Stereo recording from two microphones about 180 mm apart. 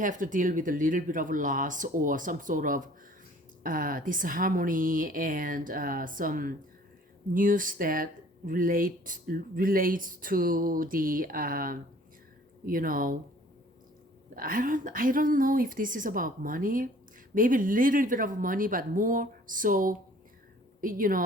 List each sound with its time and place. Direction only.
0.0 s speech: 45° right (ahead or behind)
14.3 s speech: 50° right (ahead or behind)